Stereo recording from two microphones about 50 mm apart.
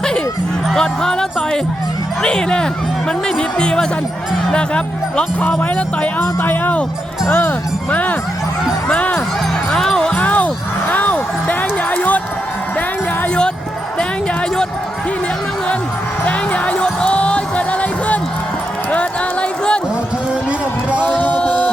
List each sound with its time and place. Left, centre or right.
0.8 s speech: centre
6.0 s speech: left
7.9 s speech: left
9.7 s music: centre
10.2 s music: left
16.2 s music: left
18.9 s a sound: left
21.0 s music: left
21.4 s a capella: left